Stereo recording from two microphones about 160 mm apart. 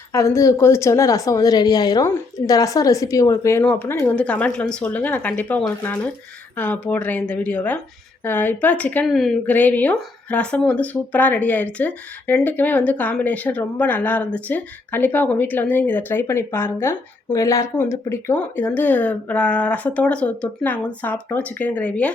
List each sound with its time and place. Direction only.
0.1 s a woman's voice: 20° left (ahead or behind)